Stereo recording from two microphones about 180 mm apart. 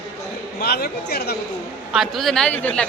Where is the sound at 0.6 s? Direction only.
60° left (ahead or behind).